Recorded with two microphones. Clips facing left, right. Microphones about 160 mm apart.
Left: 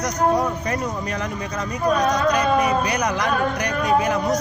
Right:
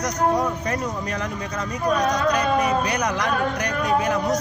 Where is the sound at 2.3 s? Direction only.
10° left (ahead or behind).